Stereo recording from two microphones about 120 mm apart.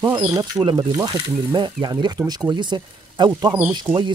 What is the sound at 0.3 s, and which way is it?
Speech, 30° right (ahead or behind).